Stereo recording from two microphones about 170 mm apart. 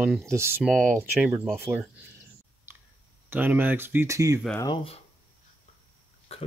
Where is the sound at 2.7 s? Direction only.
15° right (ahead or behind).